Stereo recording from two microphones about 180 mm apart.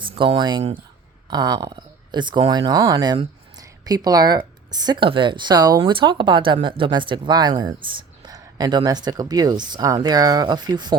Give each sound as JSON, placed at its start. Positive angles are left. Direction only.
{"t": 0.0, "sound": "speech", "side_deg": -30}